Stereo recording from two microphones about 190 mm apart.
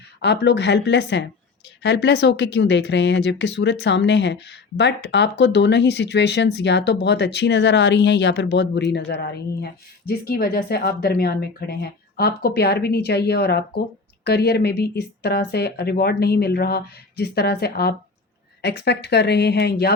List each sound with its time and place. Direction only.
0.2 s speech: 65° left (ahead or behind)